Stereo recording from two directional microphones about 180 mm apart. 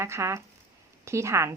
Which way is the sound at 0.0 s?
15° right (ahead or behind).